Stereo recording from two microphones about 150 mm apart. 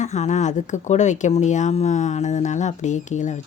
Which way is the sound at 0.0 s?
50° left (ahead or behind).